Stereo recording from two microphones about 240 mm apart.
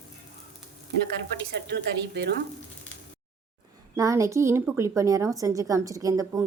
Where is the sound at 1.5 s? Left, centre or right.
Right.